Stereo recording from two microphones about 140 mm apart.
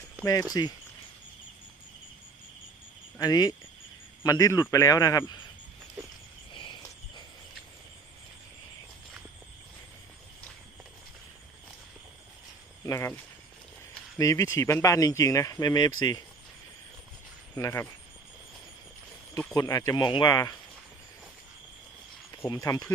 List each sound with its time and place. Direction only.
0.3 s speech: 25° left (ahead or behind)
3.2 s speech: 30° left (ahead or behind)
5.2 s speech: 35° left (ahead or behind)
6.5 s cricket: 35° left (ahead or behind)
12.8 s speech: 20° left (ahead or behind)
14.2 s speech: 25° left (ahead or behind)
17.5 s speech: 15° left (ahead or behind)
19.5 s speech: 25° left (ahead or behind)
22.7 s speech: 25° left (ahead or behind)